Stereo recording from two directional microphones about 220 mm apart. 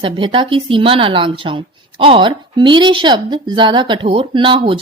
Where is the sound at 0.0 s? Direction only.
25° right (ahead or behind).